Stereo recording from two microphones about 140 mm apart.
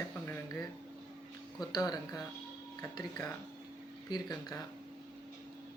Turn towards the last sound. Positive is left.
turn(degrees=30)  # may be behind; listen again after turning